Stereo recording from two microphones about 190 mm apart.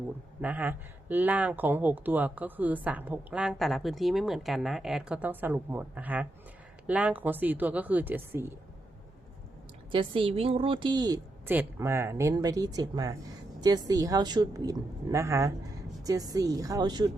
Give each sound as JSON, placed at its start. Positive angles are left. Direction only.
{"t": 0.4, "sound": "speech", "side_deg": -10}
{"t": 9.9, "sound": "a woman's voice", "side_deg": -25}